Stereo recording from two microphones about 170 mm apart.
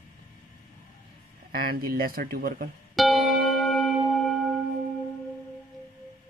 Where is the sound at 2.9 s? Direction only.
Centre (ahead or behind).